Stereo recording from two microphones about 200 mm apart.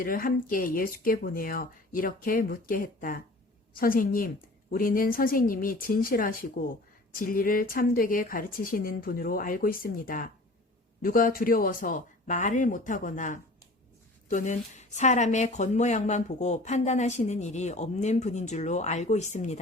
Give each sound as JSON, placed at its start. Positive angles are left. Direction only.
{"t": 0.0, "sound": "a woman's voice", "side_deg": 45}